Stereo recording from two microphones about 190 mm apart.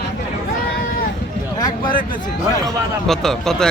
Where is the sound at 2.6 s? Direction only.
Centre (ahead or behind).